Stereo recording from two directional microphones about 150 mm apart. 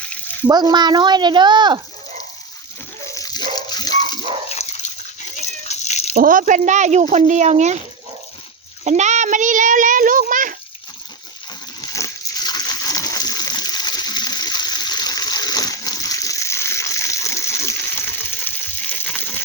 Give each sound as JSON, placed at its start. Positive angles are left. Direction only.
{"t": 0.4, "sound": "speech", "side_deg": -30}
{"t": 3.1, "sound": "dog", "side_deg": 25}
{"t": 4.6, "sound": "dog", "side_deg": 45}
{"t": 5.6, "sound": "cat", "side_deg": 50}
{"t": 6.1, "sound": "speech", "side_deg": -65}
{"t": 8.8, "sound": "a child's voice", "side_deg": -50}
{"t": 11.8, "sound": "water", "side_deg": 20}